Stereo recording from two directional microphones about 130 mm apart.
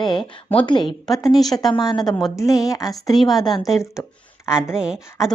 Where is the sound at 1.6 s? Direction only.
30° left (ahead or behind).